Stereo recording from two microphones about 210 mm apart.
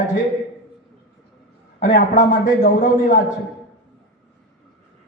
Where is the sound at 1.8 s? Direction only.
40° left (ahead or behind).